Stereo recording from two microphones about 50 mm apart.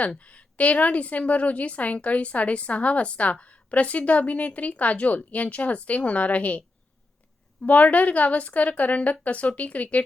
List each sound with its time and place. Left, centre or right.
0.2 s a woman's voice: left